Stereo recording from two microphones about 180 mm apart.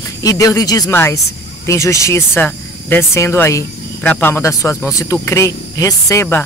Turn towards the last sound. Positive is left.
turn(degrees=15)  # may be behind; listen again after turning